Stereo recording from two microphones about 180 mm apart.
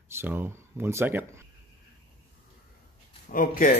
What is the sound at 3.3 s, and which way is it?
Speech, 50° left (ahead or behind).